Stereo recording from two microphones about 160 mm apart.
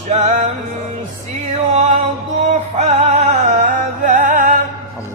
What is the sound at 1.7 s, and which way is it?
Music, 40° right (ahead or behind).